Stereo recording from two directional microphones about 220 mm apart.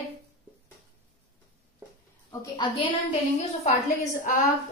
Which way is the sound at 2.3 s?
15° left (ahead or behind).